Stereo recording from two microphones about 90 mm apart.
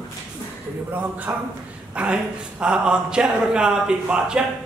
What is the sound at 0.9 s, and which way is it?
Speech, 15° right (ahead or behind).